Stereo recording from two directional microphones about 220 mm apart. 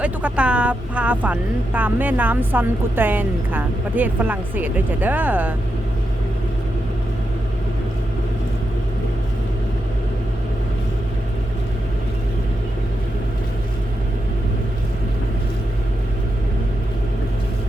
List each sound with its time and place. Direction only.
0.0 s speech: 5° right (ahead or behind)